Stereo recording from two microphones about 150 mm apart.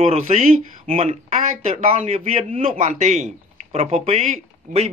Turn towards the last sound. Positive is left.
turn(degrees=-45)  # may be behind; listen again after turning